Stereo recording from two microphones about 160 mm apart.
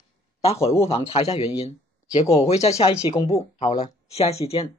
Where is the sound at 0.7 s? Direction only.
40° left (ahead or behind).